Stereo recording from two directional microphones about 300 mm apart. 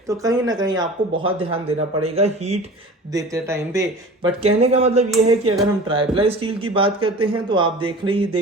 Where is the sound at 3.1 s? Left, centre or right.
Centre.